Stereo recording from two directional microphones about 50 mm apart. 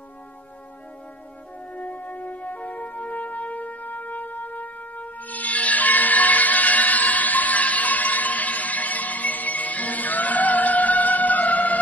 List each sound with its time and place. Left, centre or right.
1.7 s music: left